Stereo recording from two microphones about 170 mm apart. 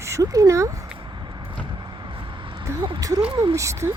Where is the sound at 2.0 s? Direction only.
30° right (ahead or behind).